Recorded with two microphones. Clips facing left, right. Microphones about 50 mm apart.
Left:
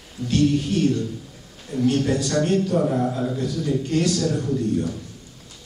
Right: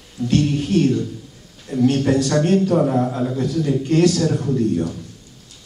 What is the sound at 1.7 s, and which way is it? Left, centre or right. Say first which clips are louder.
Speech: right 5 dB; centre.